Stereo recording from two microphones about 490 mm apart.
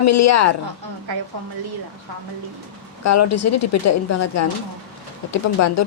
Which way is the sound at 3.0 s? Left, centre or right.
Left.